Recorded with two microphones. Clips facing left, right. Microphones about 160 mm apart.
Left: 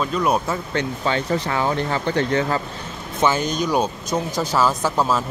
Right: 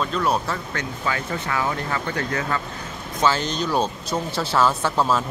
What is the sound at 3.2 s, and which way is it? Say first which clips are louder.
Speech: left 2 dB; 15° left (ahead or behind).